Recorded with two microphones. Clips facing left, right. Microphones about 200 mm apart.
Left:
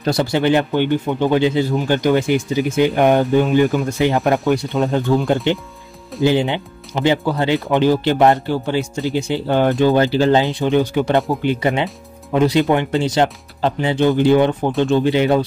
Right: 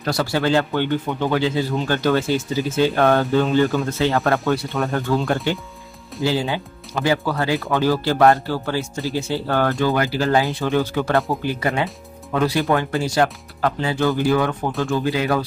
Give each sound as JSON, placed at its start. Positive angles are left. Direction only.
{"t": 0.0, "sound": "speech", "side_deg": 20}